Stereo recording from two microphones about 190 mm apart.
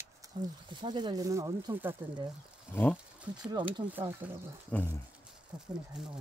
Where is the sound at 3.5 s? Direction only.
25° right (ahead or behind).